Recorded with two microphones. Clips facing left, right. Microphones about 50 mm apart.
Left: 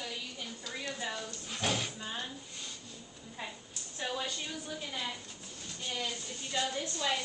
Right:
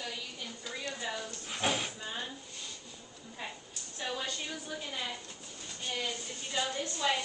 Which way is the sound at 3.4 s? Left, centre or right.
Centre.